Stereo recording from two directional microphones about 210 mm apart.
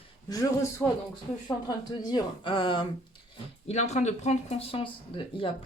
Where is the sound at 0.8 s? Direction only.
10° left (ahead or behind).